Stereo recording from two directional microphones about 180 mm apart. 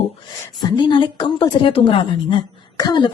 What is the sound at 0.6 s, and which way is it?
A woman's voice, 25° left (ahead or behind).